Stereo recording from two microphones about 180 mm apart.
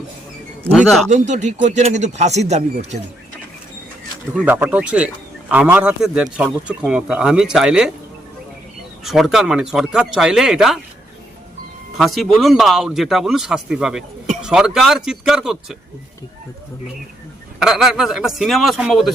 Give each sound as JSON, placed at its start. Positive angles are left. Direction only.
{"t": 0.7, "sound": "speech", "side_deg": 0}
{"t": 1.1, "sound": "speech", "side_deg": -40}
{"t": 4.4, "sound": "speech", "side_deg": -10}
{"t": 9.0, "sound": "speech", "side_deg": 0}
{"t": 11.9, "sound": "speech", "side_deg": 0}
{"t": 17.6, "sound": "speech", "side_deg": 0}